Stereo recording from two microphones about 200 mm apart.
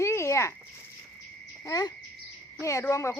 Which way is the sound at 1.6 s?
20° left (ahead or behind).